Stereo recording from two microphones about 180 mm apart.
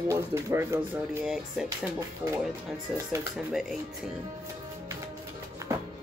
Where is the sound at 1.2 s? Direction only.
Centre (ahead or behind).